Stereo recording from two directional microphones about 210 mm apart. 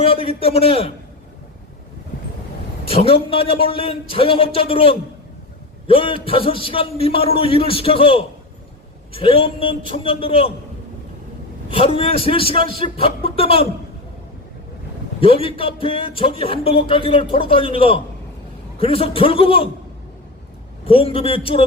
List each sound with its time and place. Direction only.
0.0 s speech: 25° left (ahead or behind)
2.9 s speech: 25° left (ahead or behind)
11.7 s speech: 25° left (ahead or behind)
15.2 s speech: 25° left (ahead or behind)
20.8 s speech: 25° left (ahead or behind)